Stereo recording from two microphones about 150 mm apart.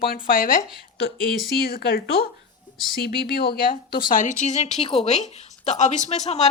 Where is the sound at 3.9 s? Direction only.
70° left (ahead or behind).